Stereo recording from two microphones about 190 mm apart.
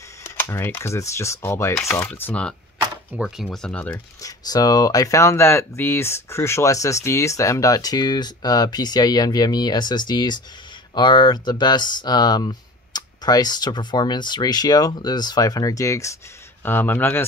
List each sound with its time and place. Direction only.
0.2 s speech: 15° left (ahead or behind)
3.1 s speech: 5° right (ahead or behind)
4.2 s speech: 20° left (ahead or behind)